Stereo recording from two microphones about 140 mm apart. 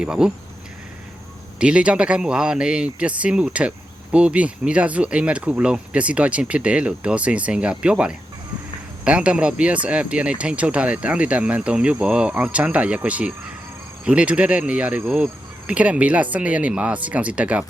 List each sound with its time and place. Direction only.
0.0 s speech: 5° right (ahead or behind)
1.5 s speech: 10° right (ahead or behind)